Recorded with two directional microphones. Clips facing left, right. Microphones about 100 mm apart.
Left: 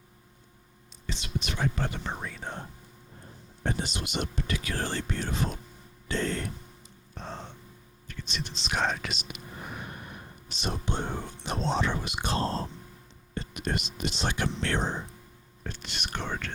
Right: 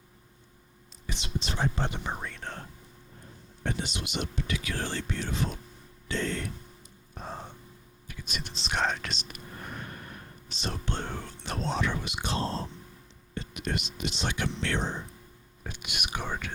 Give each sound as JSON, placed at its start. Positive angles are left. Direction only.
{"t": 1.0, "sound": "a sound", "side_deg": -15}
{"t": 1.4, "sound": "speech", "side_deg": -30}
{"t": 2.0, "sound": "speech", "side_deg": 0}
{"t": 2.4, "sound": "speech", "side_deg": 15}
{"t": 3.6, "sound": "speech", "side_deg": 35}
{"t": 7.1, "sound": "a sound", "side_deg": -10}
{"t": 8.0, "sound": "whispering", "side_deg": -10}
{"t": 8.5, "sound": "speech", "side_deg": 0}
{"t": 9.6, "sound": "whispering", "side_deg": 10}
{"t": 12.0, "sound": "speech", "side_deg": 45}
{"t": 15.6, "sound": "speech", "side_deg": -10}